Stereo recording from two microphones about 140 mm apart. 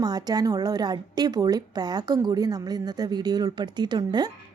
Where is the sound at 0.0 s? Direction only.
30° right (ahead or behind).